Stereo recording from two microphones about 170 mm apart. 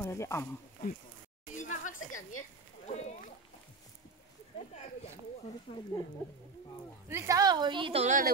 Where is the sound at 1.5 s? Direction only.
50° left (ahead or behind).